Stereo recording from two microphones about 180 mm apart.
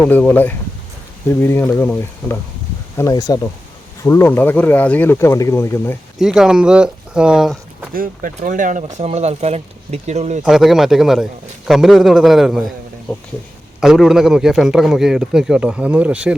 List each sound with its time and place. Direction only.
0.0 s speech: 10° left (ahead or behind)
6.1 s speech: centre (ahead or behind)
7.9 s speech: 50° right (ahead or behind)
10.4 s a man's voice: centre (ahead or behind)